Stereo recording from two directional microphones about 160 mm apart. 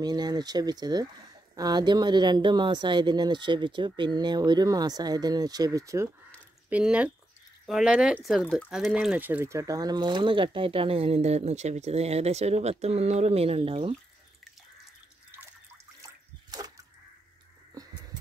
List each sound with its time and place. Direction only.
0.0 s speech: 25° right (ahead or behind)
6.7 s speech: 5° right (ahead or behind); by 13.9 s 35° right (ahead or behind)
16.0 s water: 25° right (ahead or behind)
17.8 s a sound: 25° right (ahead or behind)